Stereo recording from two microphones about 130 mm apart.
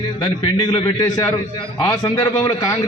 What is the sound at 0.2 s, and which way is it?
A man's voice, 35° left (ahead or behind).